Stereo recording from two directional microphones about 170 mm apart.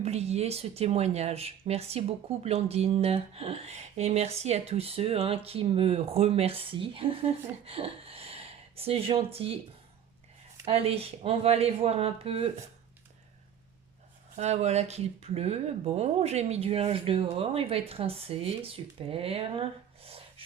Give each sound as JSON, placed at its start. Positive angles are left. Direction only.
{"t": 0.0, "sound": "speech", "side_deg": -40}
{"t": 10.7, "sound": "speech", "side_deg": -35}
{"t": 14.3, "sound": "speech", "side_deg": -40}